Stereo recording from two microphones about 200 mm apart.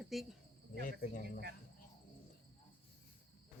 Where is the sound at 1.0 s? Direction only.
45° left (ahead or behind).